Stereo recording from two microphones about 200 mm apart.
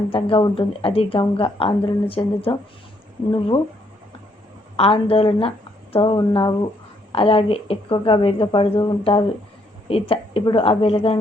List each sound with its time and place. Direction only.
0.1 s speech: 25° left (ahead or behind)
4.8 s speech: 30° left (ahead or behind)